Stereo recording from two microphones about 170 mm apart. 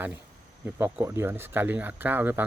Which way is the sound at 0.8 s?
15° right (ahead or behind).